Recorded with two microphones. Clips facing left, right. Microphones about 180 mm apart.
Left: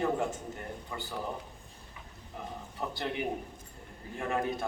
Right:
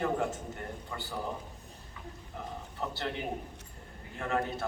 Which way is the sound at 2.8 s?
15° left (ahead or behind).